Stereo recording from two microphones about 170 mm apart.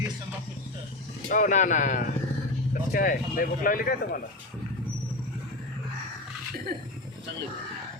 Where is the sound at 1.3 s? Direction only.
50° left (ahead or behind).